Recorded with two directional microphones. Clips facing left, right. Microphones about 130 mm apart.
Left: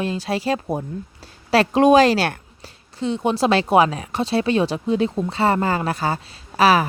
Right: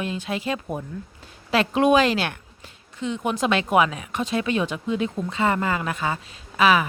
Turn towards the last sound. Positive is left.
turn(degrees=35)  # may be behind; listen again after turning